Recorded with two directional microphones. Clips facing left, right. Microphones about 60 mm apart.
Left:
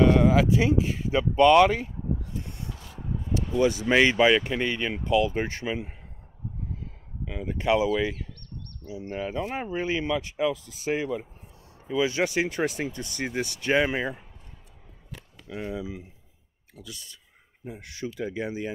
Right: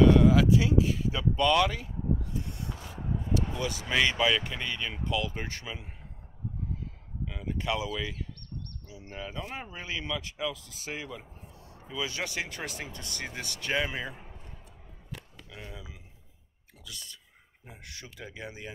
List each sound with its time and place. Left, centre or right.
0.0 s speech: left
3.3 s speech: left
7.2 s speech: left
15.5 s speech: left